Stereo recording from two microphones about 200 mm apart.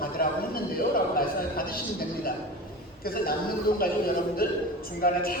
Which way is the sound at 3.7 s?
50° left (ahead or behind).